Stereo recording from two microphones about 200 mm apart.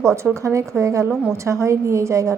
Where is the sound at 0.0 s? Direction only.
15° right (ahead or behind).